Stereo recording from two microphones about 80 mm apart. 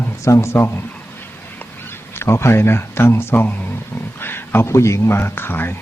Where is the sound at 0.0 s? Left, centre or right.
Left.